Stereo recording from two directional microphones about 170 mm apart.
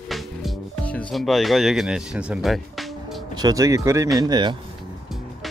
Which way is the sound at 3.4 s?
20° right (ahead or behind).